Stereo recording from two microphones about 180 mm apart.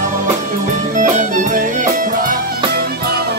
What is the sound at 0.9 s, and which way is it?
Music, 45° right (ahead or behind).